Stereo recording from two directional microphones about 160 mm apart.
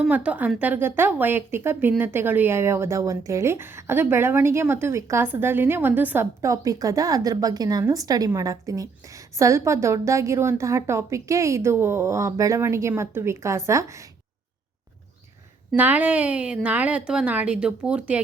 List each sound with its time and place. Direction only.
0.0 s speech: 10° right (ahead or behind)
15.7 s speech: 10° right (ahead or behind)